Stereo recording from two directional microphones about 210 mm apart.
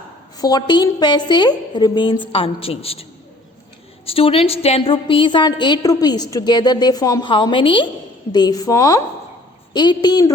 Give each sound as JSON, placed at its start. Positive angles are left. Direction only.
{"t": 0.3, "sound": "a woman's voice", "side_deg": 20}